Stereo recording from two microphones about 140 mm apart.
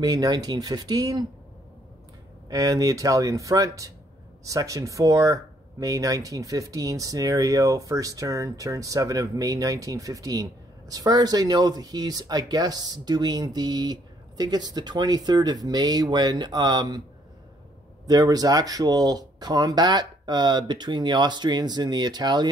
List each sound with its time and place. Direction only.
0.0 s speech: 25° right (ahead or behind)
2.5 s speech: 25° right (ahead or behind)
18.0 s speech: 30° right (ahead or behind)